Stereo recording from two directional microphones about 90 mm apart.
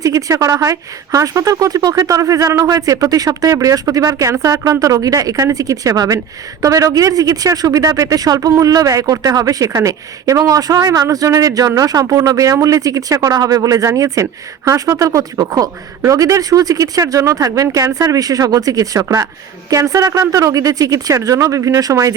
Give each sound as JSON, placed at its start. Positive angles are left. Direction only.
{"t": 0.0, "sound": "a woman's voice", "side_deg": -40}